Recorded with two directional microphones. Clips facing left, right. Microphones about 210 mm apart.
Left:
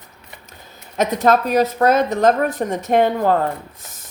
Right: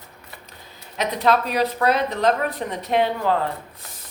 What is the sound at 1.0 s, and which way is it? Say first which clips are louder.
A woman's voice: left 4 dB; 45° left (ahead or behind).